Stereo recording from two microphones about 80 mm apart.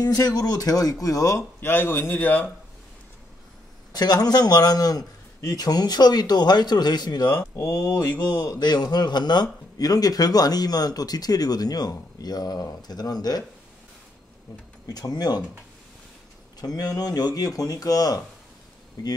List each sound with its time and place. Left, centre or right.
0.0 s speech: left
1.6 s a man's voice: left
3.9 s a man's voice: left
14.9 s a man's voice: left
16.6 s speech: left